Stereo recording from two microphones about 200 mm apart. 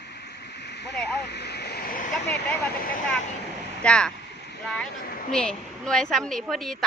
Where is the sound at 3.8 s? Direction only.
5° left (ahead or behind).